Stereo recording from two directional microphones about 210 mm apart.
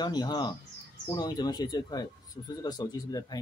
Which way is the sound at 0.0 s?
20° left (ahead or behind).